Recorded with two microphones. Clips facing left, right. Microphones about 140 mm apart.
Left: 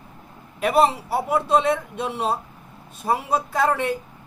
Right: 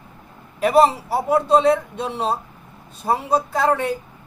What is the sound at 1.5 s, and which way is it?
Speech, 35° right (ahead or behind).